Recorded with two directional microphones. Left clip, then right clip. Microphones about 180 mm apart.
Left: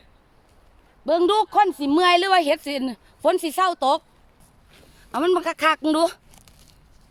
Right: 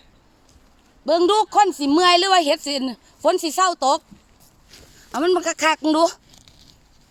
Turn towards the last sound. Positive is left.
turn(degrees=-10)  # may be behind; listen again after turning